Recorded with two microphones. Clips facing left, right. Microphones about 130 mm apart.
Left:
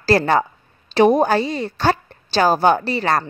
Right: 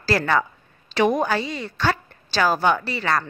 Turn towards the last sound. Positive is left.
turn(degrees=35)  # may be behind; listen again after turning